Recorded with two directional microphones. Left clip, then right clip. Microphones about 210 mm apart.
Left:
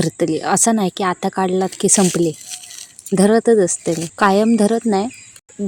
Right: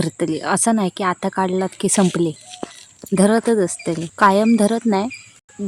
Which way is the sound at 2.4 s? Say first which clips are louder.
Even; 55° left (ahead or behind).